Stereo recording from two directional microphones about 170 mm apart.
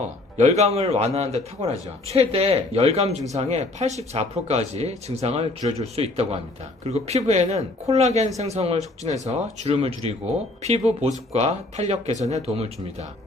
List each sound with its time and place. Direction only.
0.3 s a man's voice: 40° right (ahead or behind)